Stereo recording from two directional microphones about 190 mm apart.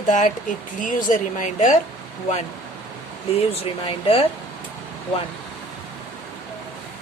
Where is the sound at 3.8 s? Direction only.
30° left (ahead or behind).